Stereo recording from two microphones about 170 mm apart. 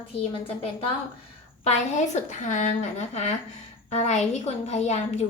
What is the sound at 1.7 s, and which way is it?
A woman's voice, 45° left (ahead or behind).